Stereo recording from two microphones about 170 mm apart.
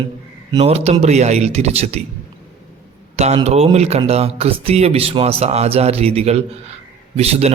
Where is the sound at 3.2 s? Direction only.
40° right (ahead or behind).